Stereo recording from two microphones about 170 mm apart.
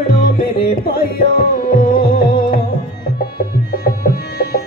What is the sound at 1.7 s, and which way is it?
Music, 60° left (ahead or behind).